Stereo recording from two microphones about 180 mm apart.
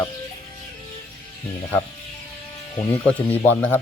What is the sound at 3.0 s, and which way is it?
Speech, 10° left (ahead or behind).